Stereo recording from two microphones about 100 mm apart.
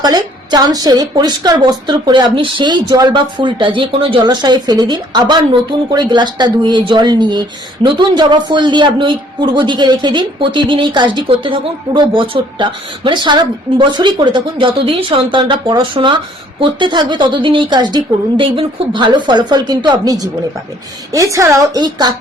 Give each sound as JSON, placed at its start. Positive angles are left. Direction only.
{"t": 0.0, "sound": "a woman's voice", "side_deg": -45}
{"t": 4.3, "sound": "a woman's voice", "side_deg": -45}